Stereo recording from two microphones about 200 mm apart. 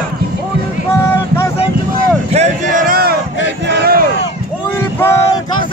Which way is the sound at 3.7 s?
50° right (ahead or behind).